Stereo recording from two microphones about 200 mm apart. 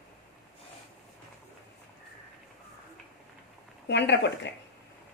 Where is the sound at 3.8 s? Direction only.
60° left (ahead or behind).